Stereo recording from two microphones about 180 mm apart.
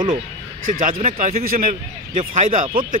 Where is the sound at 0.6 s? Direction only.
50° right (ahead or behind).